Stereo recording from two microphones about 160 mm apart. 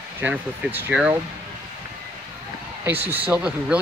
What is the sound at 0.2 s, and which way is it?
Speech, 10° right (ahead or behind).